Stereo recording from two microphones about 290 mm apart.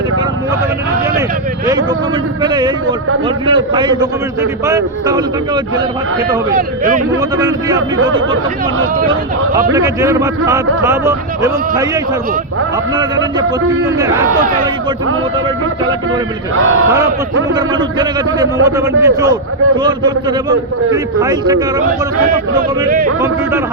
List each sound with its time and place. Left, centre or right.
2.4 s a man's voice: centre
6.6 s speech: right
7.2 s a man's voice: centre
9.7 s a man's voice: centre
17.5 s a man's voice: centre